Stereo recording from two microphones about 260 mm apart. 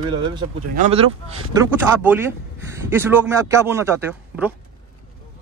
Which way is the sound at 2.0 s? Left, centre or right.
Centre.